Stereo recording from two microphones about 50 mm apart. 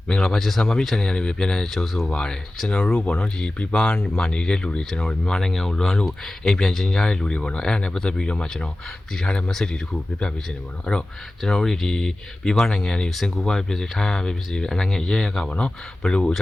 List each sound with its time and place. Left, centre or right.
0.1 s speech: centre
11.4 s speech: centre
13.1 s speech: centre